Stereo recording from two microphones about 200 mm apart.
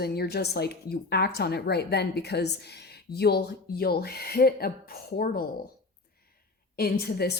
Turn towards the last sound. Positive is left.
turn(degrees=55)  # may be behind; listen again after turning